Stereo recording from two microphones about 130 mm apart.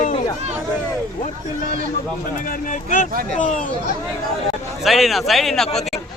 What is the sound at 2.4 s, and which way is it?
Speech, 85° left.